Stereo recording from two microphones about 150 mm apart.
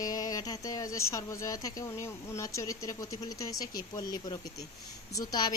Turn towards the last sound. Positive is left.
turn(degrees=25)  # may be behind; listen again after turning